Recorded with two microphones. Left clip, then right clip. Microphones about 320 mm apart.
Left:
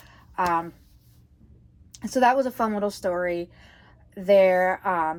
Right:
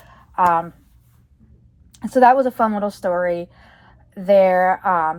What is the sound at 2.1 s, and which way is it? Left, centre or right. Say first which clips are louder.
A woman's voice: right 7 dB; centre.